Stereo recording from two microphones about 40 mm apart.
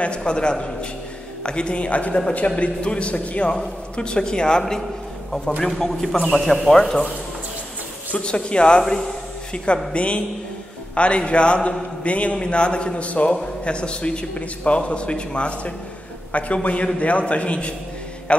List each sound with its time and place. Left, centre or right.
0.0 s a man's voice: left
1.9 s a man's voice: left
5.8 s a man's voice: centre
8.2 s a man's voice: left